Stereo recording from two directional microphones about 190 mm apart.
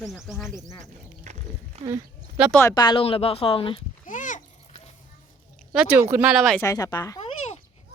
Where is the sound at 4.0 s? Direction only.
45° left (ahead or behind).